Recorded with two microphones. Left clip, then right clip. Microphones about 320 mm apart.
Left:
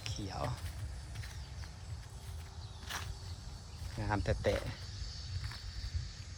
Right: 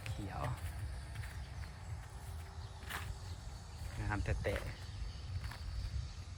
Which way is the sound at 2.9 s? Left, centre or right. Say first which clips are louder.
Left 2 dB; centre.